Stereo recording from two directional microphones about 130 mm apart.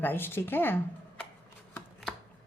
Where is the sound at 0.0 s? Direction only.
15° left (ahead or behind).